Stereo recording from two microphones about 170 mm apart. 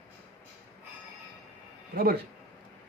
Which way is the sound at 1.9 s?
60° right (ahead or behind).